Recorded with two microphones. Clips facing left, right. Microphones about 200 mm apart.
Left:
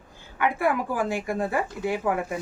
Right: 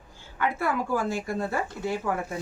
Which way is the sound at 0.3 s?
15° left (ahead or behind).